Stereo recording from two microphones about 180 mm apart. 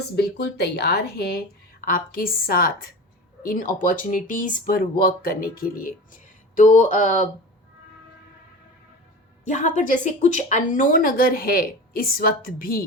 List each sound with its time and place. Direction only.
0.2 s speech: 65° left (ahead or behind)
1.8 s speech: 50° left (ahead or behind)
9.5 s speech: 40° left (ahead or behind)